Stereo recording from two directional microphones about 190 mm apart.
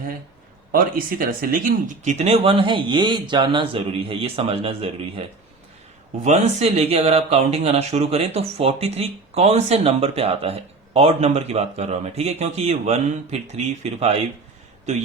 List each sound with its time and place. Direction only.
0.7 s speech: 50° right (ahead or behind); by 5.2 s 30° right (ahead or behind)
6.2 s speech: 35° right (ahead or behind)